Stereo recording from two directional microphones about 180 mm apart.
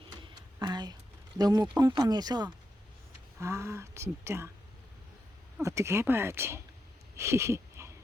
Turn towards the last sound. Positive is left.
turn(degrees=-15)  # may be behind; listen again after turning